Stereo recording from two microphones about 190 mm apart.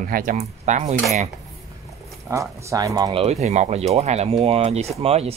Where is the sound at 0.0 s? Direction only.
45° right (ahead or behind).